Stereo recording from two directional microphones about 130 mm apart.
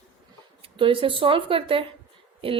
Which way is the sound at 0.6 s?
40° right (ahead or behind).